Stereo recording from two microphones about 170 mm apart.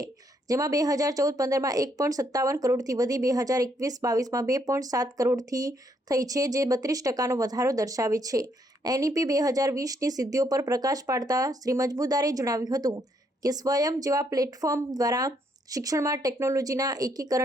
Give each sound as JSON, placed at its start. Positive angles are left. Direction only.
{"t": 0.0, "sound": "a woman's voice", "side_deg": -20}